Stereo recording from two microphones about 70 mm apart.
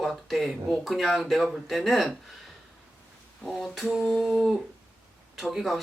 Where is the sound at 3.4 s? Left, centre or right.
Centre.